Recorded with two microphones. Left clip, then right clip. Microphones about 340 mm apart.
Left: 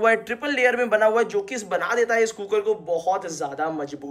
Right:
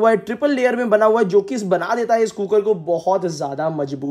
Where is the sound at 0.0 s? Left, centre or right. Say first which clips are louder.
Right 5 dB; centre.